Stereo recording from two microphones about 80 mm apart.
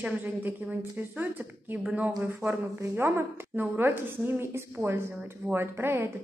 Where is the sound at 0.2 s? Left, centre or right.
Right.